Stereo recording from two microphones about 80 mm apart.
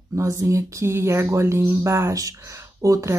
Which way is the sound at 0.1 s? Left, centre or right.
Right.